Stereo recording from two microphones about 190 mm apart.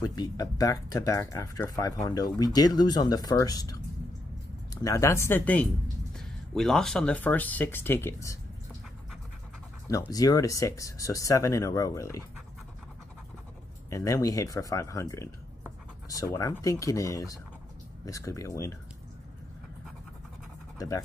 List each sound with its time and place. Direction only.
0.0 s speech: 20° left (ahead or behind)
4.8 s speech: 15° left (ahead or behind)
9.8 s speech: 20° left (ahead or behind)
13.8 s speech: 15° left (ahead or behind)
20.7 s speech: 15° left (ahead or behind)